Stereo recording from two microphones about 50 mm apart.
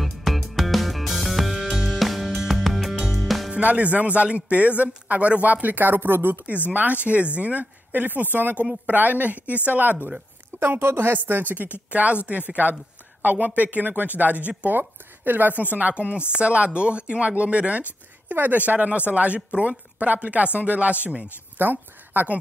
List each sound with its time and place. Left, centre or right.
0.0 s music: centre
3.5 s a man's voice: right
6.7 s a man's voice: right
10.6 s a man's voice: right
15.8 s speech: right
18.3 s a man's voice: right
21.5 s a woman's voice: right